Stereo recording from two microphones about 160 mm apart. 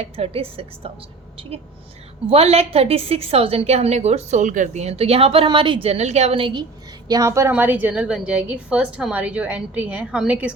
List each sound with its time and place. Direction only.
0.0 s a woman's voice: 40° right (ahead or behind)
7.1 s a woman's voice: 20° right (ahead or behind)